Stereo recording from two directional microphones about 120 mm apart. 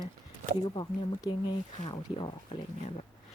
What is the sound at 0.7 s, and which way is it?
Speech, 35° left (ahead or behind).